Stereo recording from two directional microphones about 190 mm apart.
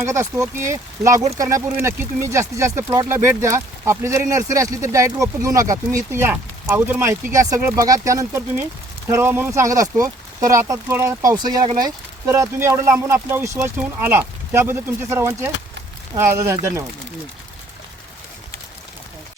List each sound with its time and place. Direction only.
0.0 s speech: 15° right (ahead or behind)